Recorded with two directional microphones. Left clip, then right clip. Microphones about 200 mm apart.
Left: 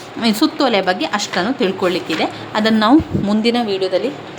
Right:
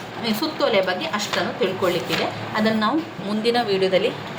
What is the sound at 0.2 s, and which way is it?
A woman's voice, 60° left (ahead or behind).